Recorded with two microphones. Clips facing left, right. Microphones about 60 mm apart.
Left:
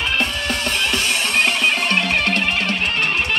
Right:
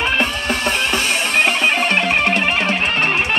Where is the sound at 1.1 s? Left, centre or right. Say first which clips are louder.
Right 3 dB; centre.